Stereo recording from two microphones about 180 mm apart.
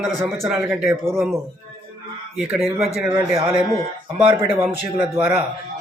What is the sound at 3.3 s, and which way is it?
Speech, 30° right (ahead or behind).